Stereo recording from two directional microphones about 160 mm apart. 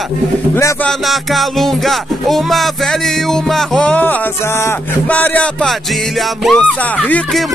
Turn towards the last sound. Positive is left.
turn(degrees=5)  # may be behind; listen again after turning